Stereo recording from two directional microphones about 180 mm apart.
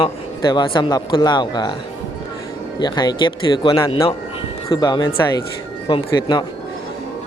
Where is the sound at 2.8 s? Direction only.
25° left (ahead or behind).